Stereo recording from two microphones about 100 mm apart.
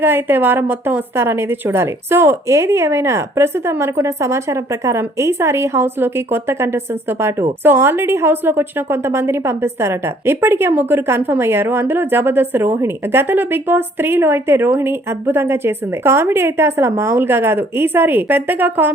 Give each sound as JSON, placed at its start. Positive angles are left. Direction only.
{"t": 0.0, "sound": "a woman's voice", "side_deg": -20}